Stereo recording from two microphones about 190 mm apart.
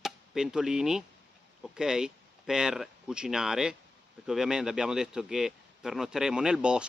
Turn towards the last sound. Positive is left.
turn(degrees=-5)  # may be behind; listen again after turning